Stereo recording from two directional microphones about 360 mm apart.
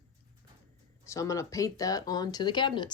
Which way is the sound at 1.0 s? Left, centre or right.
Centre.